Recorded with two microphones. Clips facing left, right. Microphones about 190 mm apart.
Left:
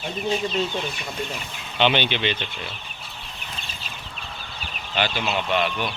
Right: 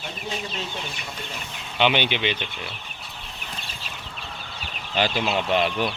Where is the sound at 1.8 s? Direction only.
10° right (ahead or behind).